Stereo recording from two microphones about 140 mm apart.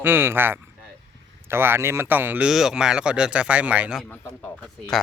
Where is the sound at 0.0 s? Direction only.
15° right (ahead or behind).